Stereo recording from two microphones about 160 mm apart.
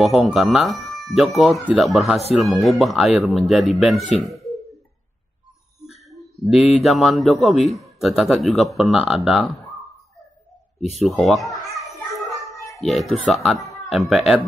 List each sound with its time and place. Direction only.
0.0 s a man's voice: centre (ahead or behind)
6.0 s a sound: centre (ahead or behind)
6.8 s a man's voice: centre (ahead or behind)
11.1 s children playing: centre (ahead or behind)
12.8 s a man's voice: centre (ahead or behind)